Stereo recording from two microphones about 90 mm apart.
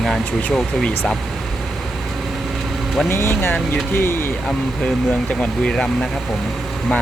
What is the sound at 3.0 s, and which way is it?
Speech, 25° left (ahead or behind).